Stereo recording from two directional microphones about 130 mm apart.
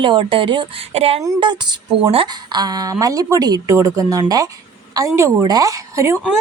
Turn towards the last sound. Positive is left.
turn(degrees=-20)  # may be behind; listen again after turning